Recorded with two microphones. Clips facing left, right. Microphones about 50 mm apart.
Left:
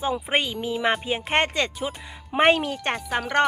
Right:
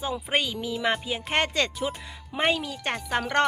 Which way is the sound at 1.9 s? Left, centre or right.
Centre.